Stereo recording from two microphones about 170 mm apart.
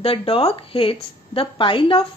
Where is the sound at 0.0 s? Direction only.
30° left (ahead or behind).